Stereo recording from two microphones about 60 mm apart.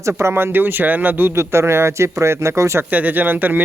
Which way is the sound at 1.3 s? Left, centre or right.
Right.